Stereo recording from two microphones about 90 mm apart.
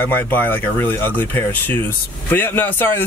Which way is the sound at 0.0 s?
25° left (ahead or behind).